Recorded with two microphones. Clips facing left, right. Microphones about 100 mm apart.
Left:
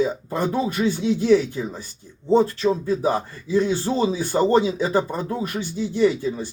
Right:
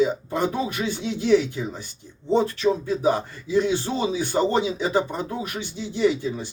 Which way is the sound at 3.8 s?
40° left (ahead or behind).